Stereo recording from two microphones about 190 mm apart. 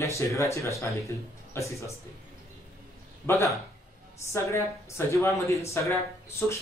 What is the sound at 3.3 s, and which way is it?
Speech, 15° left (ahead or behind).